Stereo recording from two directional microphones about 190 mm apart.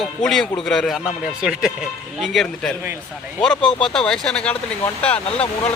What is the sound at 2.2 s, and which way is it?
Speech, centre (ahead or behind).